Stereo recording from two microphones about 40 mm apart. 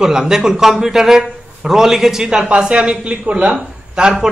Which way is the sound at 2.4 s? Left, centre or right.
Right.